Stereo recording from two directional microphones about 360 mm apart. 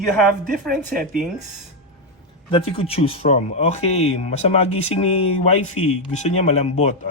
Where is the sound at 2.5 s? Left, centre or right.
Centre.